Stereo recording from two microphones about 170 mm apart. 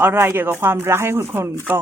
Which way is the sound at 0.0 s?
15° right (ahead or behind).